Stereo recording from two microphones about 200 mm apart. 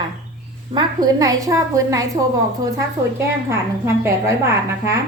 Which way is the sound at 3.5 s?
15° right (ahead or behind).